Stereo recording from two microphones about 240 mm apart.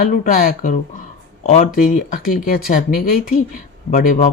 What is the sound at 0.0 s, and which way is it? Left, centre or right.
Speech, left.